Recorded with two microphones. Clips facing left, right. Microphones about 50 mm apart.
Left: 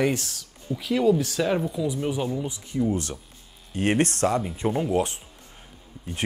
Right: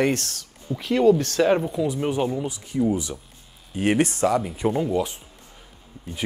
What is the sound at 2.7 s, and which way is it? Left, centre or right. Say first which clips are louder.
Speech: right 3 dB; centre.